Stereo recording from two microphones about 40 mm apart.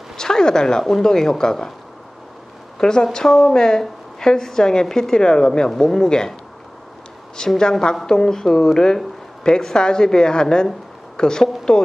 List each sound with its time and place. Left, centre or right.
0.2 s a woman's voice: centre
2.7 s a woman's voice: centre
7.3 s a woman's voice: centre